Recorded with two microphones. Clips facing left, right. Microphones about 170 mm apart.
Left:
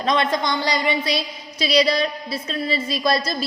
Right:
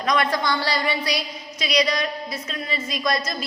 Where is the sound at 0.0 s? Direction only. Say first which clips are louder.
Left 2 dB; 25° left (ahead or behind).